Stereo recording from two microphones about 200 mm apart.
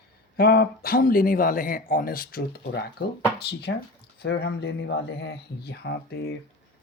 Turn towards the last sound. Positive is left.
turn(degrees=55)  # may be behind; listen again after turning